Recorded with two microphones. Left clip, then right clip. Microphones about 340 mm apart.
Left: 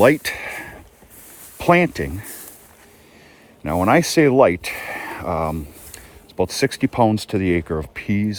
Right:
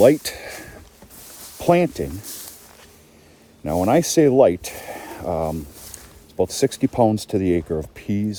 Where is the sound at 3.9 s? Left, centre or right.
Centre.